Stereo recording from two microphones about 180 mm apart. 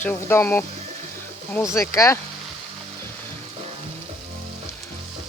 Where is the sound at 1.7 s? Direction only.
15° left (ahead or behind).